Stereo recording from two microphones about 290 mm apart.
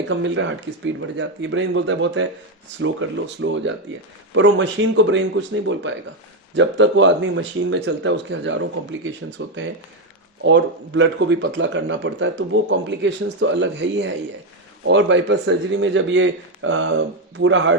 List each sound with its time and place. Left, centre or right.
0.1 s speech: right